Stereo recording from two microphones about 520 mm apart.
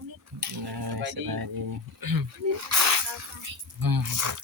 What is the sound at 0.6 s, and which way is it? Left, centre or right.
Speech, right.